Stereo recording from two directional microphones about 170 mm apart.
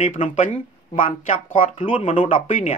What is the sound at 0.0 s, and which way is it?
Speech, 45° left (ahead or behind).